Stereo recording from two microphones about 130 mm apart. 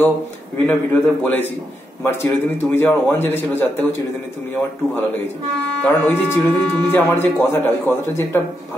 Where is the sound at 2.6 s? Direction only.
15° left (ahead or behind).